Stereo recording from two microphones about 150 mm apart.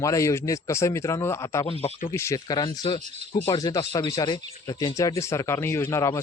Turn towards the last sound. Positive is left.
turn(degrees=20)  # may be behind; listen again after turning